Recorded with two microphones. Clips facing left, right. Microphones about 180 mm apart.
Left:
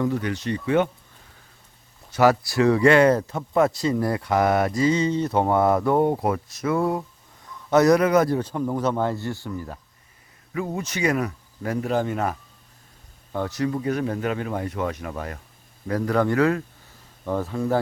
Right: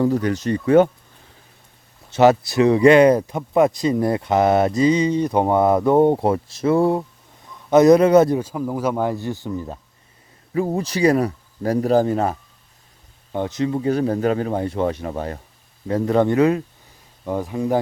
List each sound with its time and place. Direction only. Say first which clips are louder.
0.0 s speech: right 5 dB; 40° right (ahead or behind)
2.0 s speech: right 4 dB; 25° right (ahead or behind)
8.4 s speech: right 1 dB; 5° right (ahead or behind)
10.5 s speech: right 6 dB; 35° right (ahead or behind)
13.3 s speech: right 3 dB; 20° right (ahead or behind)